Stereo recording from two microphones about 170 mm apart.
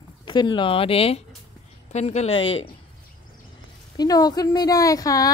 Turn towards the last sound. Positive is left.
turn(degrees=20)  # may be behind; listen again after turning